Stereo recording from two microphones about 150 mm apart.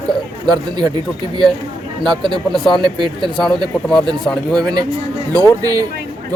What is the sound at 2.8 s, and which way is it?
Speech, 30° right (ahead or behind).